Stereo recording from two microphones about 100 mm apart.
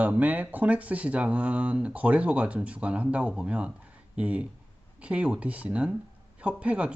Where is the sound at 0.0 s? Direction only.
15° right (ahead or behind).